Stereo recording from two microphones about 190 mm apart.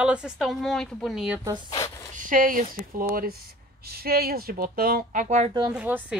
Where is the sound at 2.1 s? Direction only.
45° right (ahead or behind).